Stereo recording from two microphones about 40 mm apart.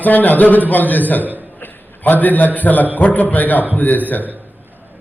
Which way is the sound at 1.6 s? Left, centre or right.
Left.